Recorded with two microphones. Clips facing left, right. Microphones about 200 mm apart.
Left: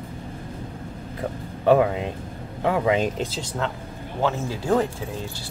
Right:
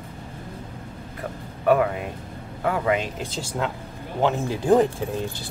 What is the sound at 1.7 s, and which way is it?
Speech, 25° left (ahead or behind).